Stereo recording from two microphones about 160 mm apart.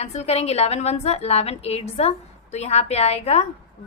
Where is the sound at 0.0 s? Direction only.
40° left (ahead or behind).